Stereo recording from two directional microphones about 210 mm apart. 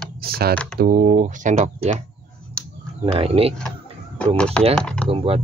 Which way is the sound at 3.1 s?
25° right (ahead or behind).